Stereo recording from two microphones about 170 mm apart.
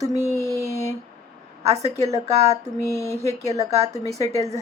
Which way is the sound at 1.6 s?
40° right (ahead or behind).